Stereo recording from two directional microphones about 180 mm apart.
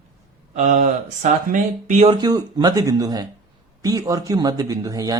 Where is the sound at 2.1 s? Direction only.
20° right (ahead or behind).